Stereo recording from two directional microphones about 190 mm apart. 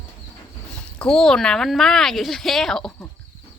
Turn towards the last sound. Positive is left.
turn(degrees=0)  # may be behind; listen again after turning